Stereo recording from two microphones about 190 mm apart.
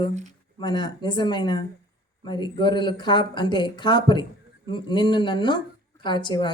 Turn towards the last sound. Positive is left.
turn(degrees=25)  # may be behind; listen again after turning